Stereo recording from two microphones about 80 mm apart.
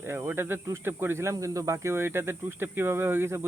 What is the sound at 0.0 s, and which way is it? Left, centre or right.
Speech, right.